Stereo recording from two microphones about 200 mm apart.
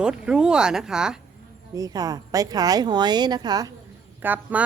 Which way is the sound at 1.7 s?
20° right (ahead or behind).